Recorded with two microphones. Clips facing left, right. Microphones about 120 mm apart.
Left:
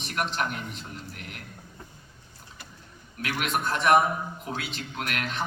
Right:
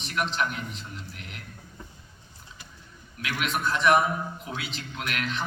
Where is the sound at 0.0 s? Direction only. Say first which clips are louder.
Right 1 dB; 50° left (ahead or behind).